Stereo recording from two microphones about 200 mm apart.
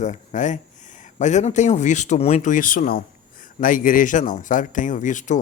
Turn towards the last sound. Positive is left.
turn(degrees=40)  # may be behind; listen again after turning